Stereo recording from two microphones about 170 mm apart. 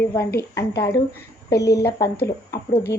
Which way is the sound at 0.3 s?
20° left (ahead or behind).